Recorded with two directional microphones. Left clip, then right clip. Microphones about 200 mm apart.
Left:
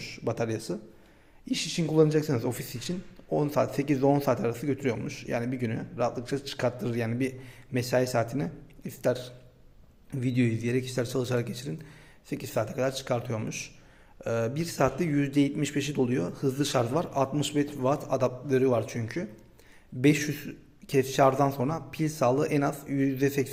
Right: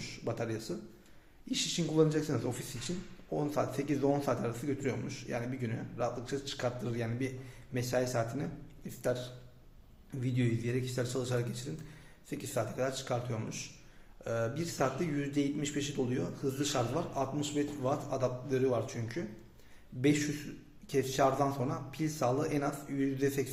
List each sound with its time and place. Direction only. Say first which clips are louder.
0.0 s a man's voice: left 6 dB; 35° left (ahead or behind)